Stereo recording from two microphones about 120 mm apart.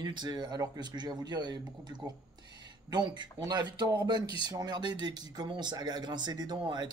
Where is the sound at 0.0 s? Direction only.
35° right (ahead or behind).